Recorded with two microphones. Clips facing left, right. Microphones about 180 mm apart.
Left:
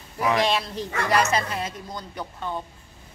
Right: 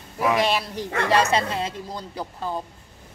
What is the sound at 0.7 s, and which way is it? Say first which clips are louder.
Speech: right 4 dB; 30° right (ahead or behind).